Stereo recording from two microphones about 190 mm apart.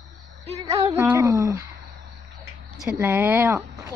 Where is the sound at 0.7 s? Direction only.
35° right (ahead or behind).